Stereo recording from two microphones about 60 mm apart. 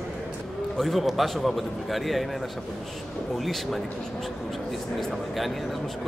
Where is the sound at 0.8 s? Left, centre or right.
Centre.